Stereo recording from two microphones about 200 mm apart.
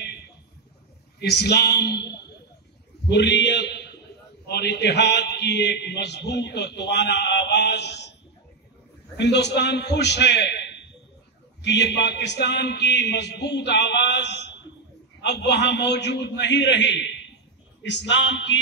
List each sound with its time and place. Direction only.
0.0 s a sound: 55° left (ahead or behind)
1.3 s a man's voice: 55° left (ahead or behind)
9.1 s a man's voice: 60° left (ahead or behind)